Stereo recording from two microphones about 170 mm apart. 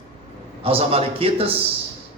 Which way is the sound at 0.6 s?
35° right (ahead or behind).